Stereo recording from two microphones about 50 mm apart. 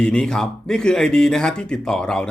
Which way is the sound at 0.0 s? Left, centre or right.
Centre.